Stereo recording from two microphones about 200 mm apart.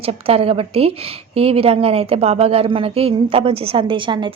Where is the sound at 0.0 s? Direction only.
30° right (ahead or behind).